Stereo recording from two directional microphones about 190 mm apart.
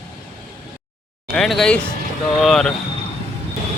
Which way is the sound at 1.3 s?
Centre (ahead or behind).